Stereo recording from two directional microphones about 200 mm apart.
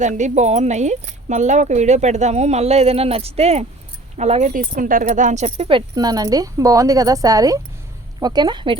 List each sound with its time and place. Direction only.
0.0 s speech: 35° right (ahead or behind)